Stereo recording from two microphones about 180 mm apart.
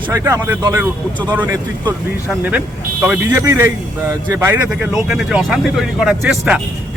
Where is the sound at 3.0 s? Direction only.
15° right (ahead or behind).